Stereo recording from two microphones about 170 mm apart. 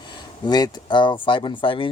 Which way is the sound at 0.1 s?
25° left (ahead or behind).